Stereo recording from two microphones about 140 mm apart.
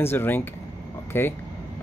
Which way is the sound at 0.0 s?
15° left (ahead or behind).